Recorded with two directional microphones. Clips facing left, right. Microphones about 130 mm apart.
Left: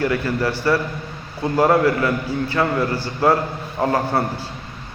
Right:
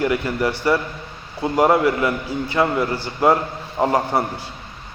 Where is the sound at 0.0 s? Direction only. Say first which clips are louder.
Even; 15° right (ahead or behind).